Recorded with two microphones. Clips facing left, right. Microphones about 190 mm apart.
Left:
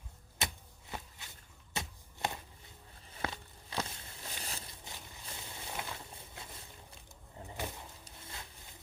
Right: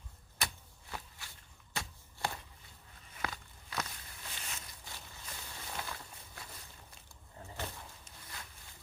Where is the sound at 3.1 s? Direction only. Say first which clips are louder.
Left 2 dB; 25° left (ahead or behind).